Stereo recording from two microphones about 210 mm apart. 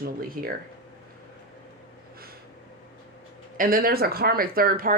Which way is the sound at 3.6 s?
45° right (ahead or behind).